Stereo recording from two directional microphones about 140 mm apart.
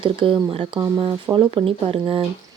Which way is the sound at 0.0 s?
35° right (ahead or behind).